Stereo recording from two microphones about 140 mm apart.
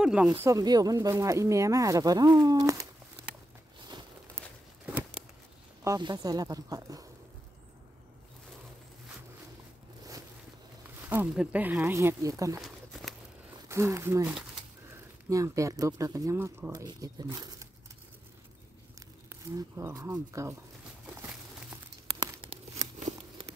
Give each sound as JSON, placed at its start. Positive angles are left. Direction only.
{"t": 0.0, "sound": "speech", "side_deg": -5}
{"t": 0.4, "sound": "speech", "side_deg": -25}
{"t": 5.9, "sound": "speech", "side_deg": -30}
{"t": 11.0, "sound": "speech", "side_deg": -15}
{"t": 12.5, "sound": "a sound", "side_deg": 0}
{"t": 13.7, "sound": "speech", "side_deg": -20}
{"t": 19.2, "sound": "speech", "side_deg": -20}
{"t": 22.4, "sound": "a sound", "side_deg": -35}